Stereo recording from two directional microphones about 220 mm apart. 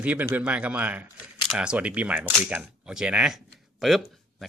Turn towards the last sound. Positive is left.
turn(degrees=0)  # may be behind; listen again after turning